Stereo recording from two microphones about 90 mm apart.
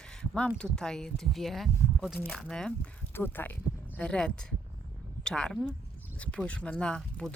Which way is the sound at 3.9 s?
10° left (ahead or behind).